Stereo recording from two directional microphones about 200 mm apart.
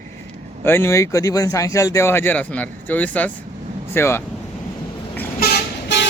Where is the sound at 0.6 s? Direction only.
10° left (ahead or behind).